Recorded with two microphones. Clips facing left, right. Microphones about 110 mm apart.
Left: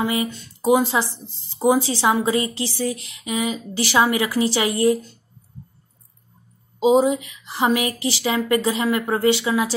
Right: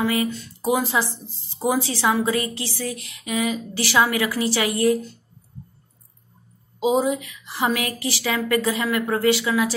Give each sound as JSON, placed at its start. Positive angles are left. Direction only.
{"t": 0.0, "sound": "a woman's voice", "side_deg": 20}
{"t": 6.8, "sound": "a woman's voice", "side_deg": 25}